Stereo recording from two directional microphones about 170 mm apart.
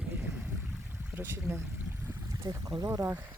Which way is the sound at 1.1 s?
15° right (ahead or behind).